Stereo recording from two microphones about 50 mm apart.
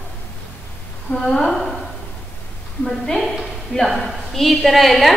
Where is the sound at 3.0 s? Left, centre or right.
Centre.